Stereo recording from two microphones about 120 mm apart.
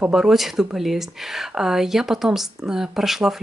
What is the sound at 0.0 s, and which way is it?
Speech, 5° right (ahead or behind).